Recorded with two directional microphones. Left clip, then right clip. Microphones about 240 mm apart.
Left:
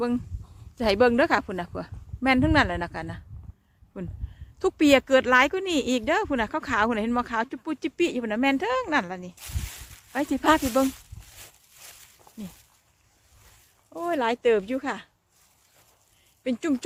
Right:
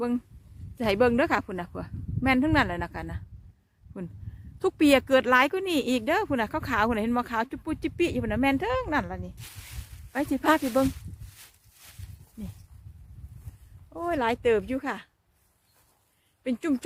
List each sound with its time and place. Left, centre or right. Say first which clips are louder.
0.8 s speech: left 3 dB; centre
10.7 s speech: left 1 dB; centre
13.9 s speech: left 1 dB; centre
16.4 s speech: left 2 dB; centre